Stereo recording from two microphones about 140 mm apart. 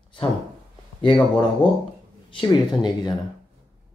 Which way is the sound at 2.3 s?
30° left (ahead or behind).